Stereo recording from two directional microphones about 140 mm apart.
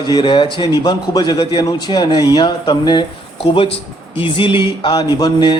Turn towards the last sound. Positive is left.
turn(degrees=30)  # may be behind; listen again after turning